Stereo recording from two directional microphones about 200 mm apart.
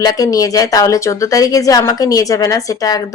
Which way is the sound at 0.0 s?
20° left (ahead or behind).